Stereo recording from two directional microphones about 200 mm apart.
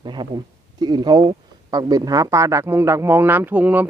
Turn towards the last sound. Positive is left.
turn(degrees=-10)  # may be behind; listen again after turning